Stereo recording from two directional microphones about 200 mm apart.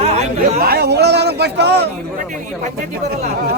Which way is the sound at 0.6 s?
50° right (ahead or behind).